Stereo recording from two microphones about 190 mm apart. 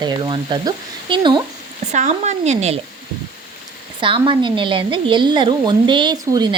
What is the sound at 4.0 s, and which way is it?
A woman's voice, 25° right (ahead or behind).